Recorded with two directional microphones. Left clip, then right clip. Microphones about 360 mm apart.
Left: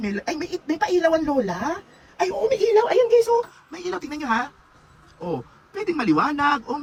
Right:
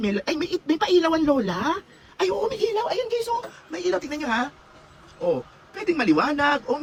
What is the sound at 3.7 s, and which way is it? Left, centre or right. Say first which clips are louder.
Speech: right 4 dB; centre.